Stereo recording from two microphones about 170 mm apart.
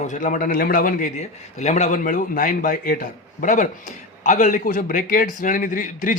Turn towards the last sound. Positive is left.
turn(degrees=50)  # may be behind; listen again after turning